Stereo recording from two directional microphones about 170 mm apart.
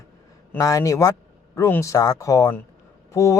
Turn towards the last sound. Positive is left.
turn(degrees=15)  # may be behind; listen again after turning